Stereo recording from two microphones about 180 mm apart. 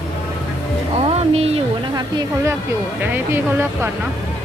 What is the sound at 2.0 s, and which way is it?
Speech, 20° right (ahead or behind).